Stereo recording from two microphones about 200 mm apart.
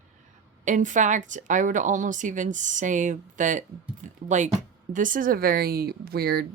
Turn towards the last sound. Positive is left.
turn(degrees=-50)  # may be behind; listen again after turning